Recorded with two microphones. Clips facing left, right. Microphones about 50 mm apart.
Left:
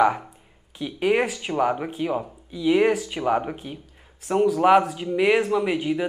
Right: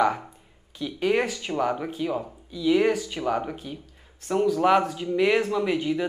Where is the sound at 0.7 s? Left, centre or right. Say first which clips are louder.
Left 2 dB; centre.